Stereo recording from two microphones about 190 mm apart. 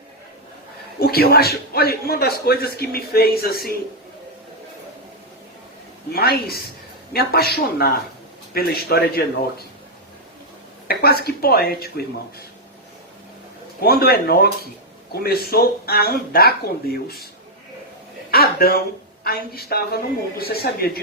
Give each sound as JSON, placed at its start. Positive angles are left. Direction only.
{"t": 0.9, "sound": "a man's voice", "side_deg": 55}
{"t": 6.1, "sound": "a man's voice", "side_deg": 55}
{"t": 10.8, "sound": "a man's voice", "side_deg": 55}
{"t": 13.8, "sound": "speech", "side_deg": 55}
{"t": 18.3, "sound": "a sound", "side_deg": 55}
{"t": 19.2, "sound": "speech", "side_deg": 55}